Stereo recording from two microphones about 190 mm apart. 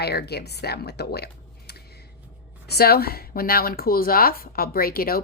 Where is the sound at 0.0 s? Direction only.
60° left (ahead or behind).